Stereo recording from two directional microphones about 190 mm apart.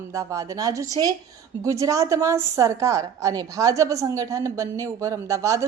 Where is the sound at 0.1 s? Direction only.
15° right (ahead or behind).